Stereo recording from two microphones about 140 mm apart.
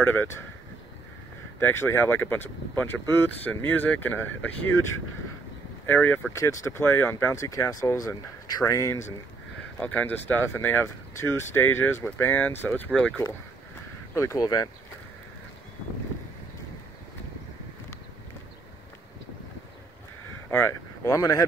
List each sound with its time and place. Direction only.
0.0 s speech: 15° left (ahead or behind)
1.6 s speech: 15° left (ahead or behind)
9.8 s speech: 10° left (ahead or behind)
14.1 s speech: 20° left (ahead or behind)
20.4 s speech: 15° left (ahead or behind)